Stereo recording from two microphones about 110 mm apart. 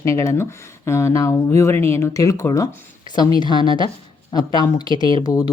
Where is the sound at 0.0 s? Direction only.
25° left (ahead or behind).